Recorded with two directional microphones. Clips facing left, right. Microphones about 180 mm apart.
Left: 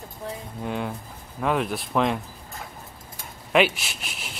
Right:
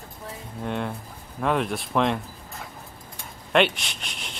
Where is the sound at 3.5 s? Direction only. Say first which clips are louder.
Even; 5° left (ahead or behind).